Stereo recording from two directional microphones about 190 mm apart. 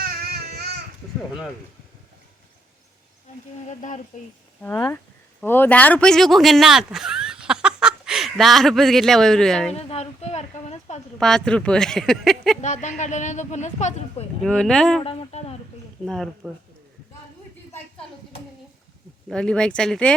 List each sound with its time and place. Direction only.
0.0 s baby cry: 55° right (ahead or behind)
3.7 s speech: 40° left (ahead or behind)
4.6 s speech: 10° left (ahead or behind)
9.7 s a sound: 35° left (ahead or behind)
11.2 s speech: 5° left (ahead or behind)
12.6 s speech: 40° left (ahead or behind)
14.4 s speech: 5° left (ahead or behind)
15.0 s speech: 30° left (ahead or behind)
16.0 s speech: centre (ahead or behind)
19.3 s speech: 5° left (ahead or behind)